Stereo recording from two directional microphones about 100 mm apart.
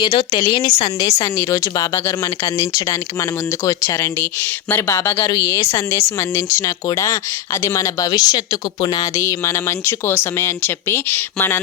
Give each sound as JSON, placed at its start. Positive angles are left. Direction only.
{"t": 0.0, "sound": "speech", "side_deg": 55}
{"t": 0.4, "sound": "speech", "side_deg": 45}